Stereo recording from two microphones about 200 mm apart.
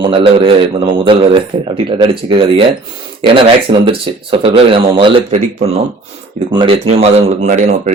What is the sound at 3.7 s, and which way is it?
Speech, 25° right (ahead or behind).